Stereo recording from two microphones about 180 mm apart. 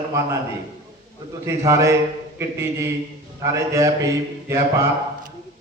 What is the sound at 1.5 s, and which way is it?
Mantra, 15° right (ahead or behind).